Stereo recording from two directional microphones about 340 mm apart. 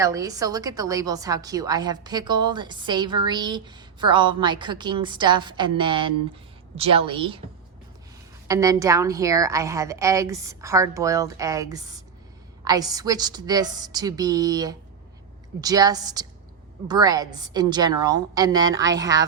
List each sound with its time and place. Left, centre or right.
0.0 s a woman's voice: centre
8.4 s a woman's voice: centre